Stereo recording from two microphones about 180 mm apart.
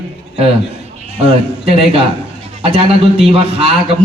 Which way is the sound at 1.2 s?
35° right (ahead or behind).